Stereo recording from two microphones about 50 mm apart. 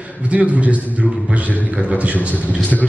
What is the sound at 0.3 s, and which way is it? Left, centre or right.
Speech, right.